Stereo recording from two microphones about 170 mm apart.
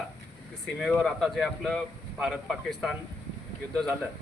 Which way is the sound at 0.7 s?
Centre (ahead or behind).